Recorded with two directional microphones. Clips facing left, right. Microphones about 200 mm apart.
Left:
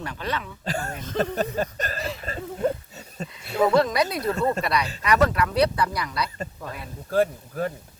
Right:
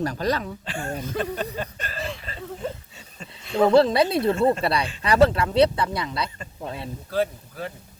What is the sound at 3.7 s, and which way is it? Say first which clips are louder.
Speech: right 7 dB; 30° right (ahead or behind).